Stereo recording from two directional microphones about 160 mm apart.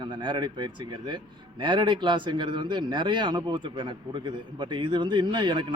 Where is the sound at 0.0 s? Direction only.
30° right (ahead or behind).